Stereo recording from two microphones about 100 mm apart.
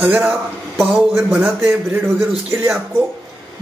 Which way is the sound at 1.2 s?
5° right (ahead or behind).